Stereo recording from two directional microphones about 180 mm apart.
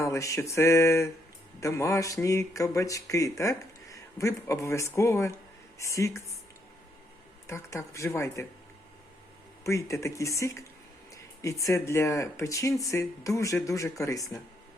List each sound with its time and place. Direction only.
0.0 s speech: 15° left (ahead or behind)
7.4 s speech: 15° left (ahead or behind)
9.6 s speech: 15° left (ahead or behind)